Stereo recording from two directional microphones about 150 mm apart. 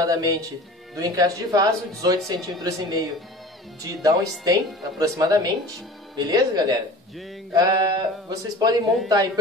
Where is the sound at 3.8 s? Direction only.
25° right (ahead or behind).